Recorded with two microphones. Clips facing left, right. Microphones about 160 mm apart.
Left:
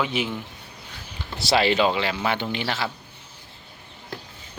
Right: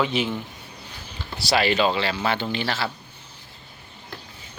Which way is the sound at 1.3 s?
25° left (ahead or behind).